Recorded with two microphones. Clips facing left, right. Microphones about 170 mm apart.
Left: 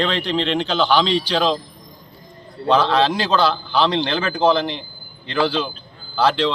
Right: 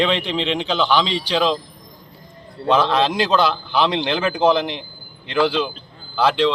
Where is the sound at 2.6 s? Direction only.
5° right (ahead or behind).